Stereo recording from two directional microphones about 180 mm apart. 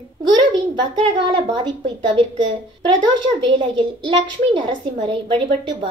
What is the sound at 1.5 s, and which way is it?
Speech, 25° right (ahead or behind).